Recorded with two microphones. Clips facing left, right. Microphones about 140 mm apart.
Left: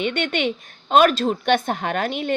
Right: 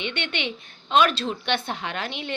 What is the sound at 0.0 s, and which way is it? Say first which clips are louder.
A woman's voice: left 7 dB; 45° left (ahead or behind).